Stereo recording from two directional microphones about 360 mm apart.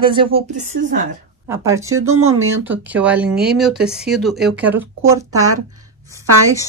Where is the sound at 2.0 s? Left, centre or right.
Right.